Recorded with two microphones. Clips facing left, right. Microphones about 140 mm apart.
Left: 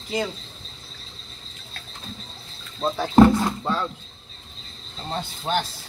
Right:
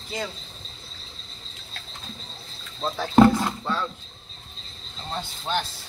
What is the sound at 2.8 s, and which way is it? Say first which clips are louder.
Speech: left 2 dB; 15° left (ahead or behind).